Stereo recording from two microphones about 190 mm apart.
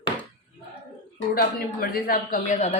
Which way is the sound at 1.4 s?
50° left (ahead or behind).